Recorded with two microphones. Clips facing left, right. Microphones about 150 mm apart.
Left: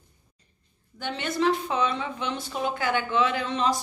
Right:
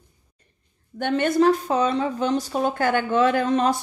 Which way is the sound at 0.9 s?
50° right (ahead or behind).